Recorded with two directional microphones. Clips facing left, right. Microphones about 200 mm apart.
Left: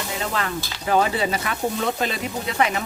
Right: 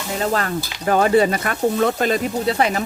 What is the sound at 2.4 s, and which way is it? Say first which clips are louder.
Stir: right 2 dB; 35° right (ahead or behind).